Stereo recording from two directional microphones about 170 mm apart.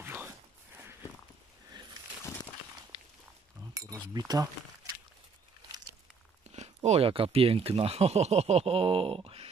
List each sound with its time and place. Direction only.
0.0 s walk: 10° right (ahead or behind)
3.7 s speech: 20° right (ahead or behind)
6.5 s speech: 40° right (ahead or behind)